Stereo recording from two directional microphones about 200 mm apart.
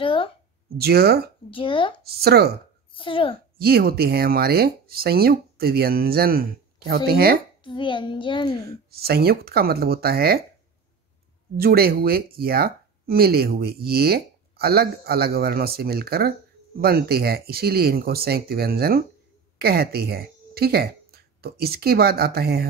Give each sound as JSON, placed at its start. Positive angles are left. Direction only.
{"t": 0.0, "sound": "a child's voice", "side_deg": 25}
{"t": 0.7, "sound": "speech", "side_deg": -50}
{"t": 1.5, "sound": "a child's voice", "side_deg": 25}
{"t": 2.0, "sound": "speech", "side_deg": -50}
{"t": 2.9, "sound": "a child's voice", "side_deg": 25}
{"t": 3.5, "sound": "speech", "side_deg": -50}
{"t": 7.6, "sound": "a child's voice", "side_deg": 25}
{"t": 8.6, "sound": "speech", "side_deg": -50}
{"t": 11.5, "sound": "speech", "side_deg": -50}